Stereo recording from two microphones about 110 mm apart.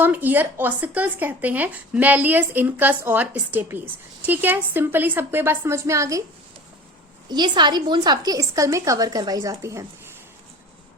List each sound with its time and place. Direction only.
0.0 s speech: 15° right (ahead or behind)
7.3 s a woman's voice: 40° right (ahead or behind)